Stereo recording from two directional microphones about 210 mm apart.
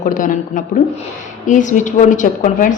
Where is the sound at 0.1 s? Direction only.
40° left (ahead or behind).